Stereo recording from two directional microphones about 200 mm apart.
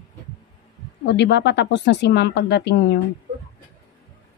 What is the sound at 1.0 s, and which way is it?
Speech, 60° left (ahead or behind).